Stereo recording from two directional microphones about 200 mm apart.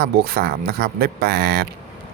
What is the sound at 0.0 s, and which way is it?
Speech, 50° right (ahead or behind).